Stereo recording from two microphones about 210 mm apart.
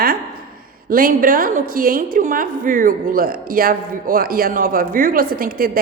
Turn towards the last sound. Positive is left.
turn(degrees=-45)  # may be behind; listen again after turning